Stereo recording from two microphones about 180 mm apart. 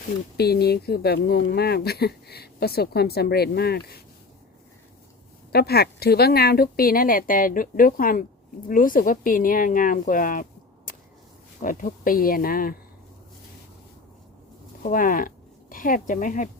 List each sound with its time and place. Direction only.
0.3 s speech: 60° left (ahead or behind)
5.5 s speech: 60° left (ahead or behind)
11.6 s speech: 50° left (ahead or behind)
14.8 s speech: 50° left (ahead or behind)